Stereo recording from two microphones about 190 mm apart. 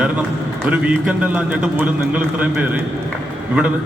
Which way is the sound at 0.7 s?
5° right (ahead or behind).